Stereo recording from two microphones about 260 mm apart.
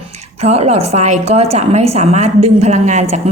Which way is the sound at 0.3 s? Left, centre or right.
Right.